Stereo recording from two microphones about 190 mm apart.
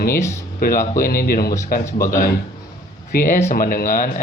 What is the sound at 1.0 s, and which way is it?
Speech, 50° left (ahead or behind).